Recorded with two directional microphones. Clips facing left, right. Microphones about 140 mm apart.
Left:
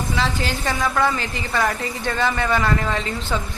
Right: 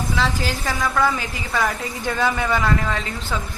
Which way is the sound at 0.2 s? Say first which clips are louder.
Even; centre (ahead or behind).